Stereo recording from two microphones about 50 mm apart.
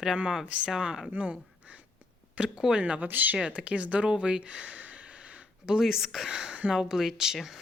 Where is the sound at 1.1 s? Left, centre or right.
Right.